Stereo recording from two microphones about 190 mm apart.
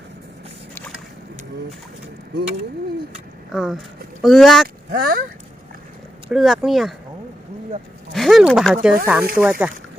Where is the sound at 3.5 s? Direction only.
Centre (ahead or behind).